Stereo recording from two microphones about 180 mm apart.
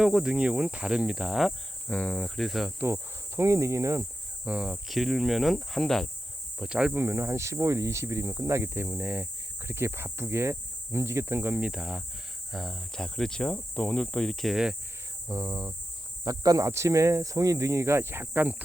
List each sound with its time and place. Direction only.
0.0 s speech: 5° right (ahead or behind)
2.8 s speech: 15° right (ahead or behind)
4.4 s speech: 5° right (ahead or behind)
15.3 s speech: 20° right (ahead or behind)